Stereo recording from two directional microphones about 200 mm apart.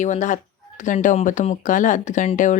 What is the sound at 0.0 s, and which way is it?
Speech, 40° left (ahead or behind).